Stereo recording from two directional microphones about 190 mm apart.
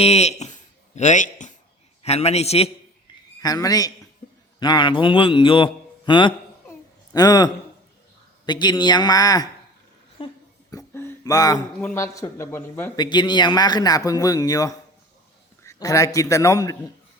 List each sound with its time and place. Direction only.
0.0 s a sound: 35° left (ahead or behind)
2.0 s a man's voice: 35° left (ahead or behind)
3.4 s speech: 20° left (ahead or behind)
10.7 s a sound: 15° left (ahead or behind)
11.8 s a man's voice: 10° left (ahead or behind)
13.0 s a man's voice: 25° left (ahead or behind)